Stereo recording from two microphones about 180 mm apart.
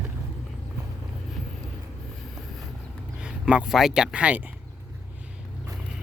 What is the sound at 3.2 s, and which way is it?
Speech, 5° right (ahead or behind).